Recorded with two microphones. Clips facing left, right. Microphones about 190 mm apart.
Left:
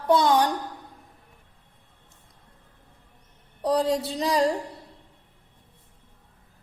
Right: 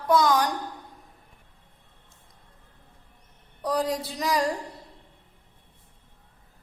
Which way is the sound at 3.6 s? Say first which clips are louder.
Left 4 dB; 30° left (ahead or behind).